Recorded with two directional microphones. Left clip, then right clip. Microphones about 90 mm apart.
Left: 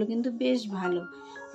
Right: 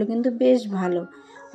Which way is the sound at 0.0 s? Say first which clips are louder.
Right 8 dB; 40° right (ahead or behind).